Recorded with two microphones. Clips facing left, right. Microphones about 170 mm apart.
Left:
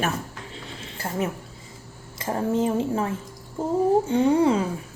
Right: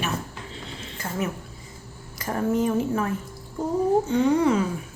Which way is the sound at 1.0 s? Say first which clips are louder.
Left 2 dB; 30° left (ahead or behind).